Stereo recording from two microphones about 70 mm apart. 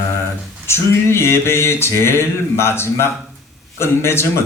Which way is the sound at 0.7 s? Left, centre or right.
Left.